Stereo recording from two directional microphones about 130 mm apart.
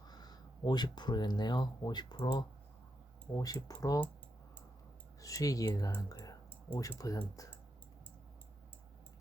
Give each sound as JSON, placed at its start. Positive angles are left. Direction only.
{"t": 0.1, "sound": "speech", "side_deg": 30}
{"t": 5.2, "sound": "speech", "side_deg": 25}